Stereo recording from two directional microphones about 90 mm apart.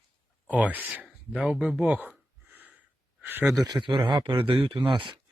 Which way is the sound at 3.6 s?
55° right (ahead or behind).